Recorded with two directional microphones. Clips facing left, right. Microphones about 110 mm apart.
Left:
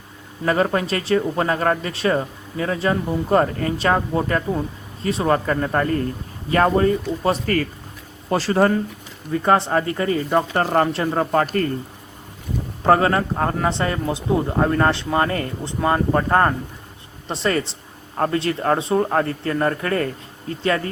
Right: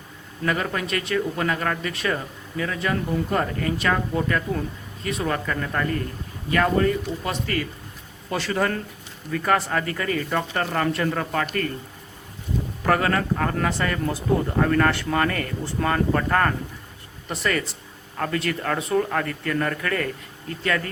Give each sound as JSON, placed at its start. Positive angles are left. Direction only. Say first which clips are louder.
{"t": 0.4, "sound": "speech", "louder": "left 6 dB", "side_deg": 35}
{"t": 12.8, "sound": "speech", "louder": "left 5 dB", "side_deg": 30}